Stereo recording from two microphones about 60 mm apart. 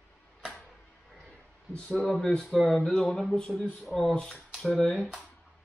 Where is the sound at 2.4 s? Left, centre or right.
Centre.